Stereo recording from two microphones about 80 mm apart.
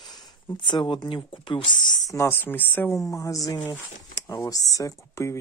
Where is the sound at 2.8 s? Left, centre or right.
Left.